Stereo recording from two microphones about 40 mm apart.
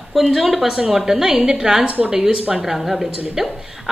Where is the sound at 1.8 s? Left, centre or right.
Right.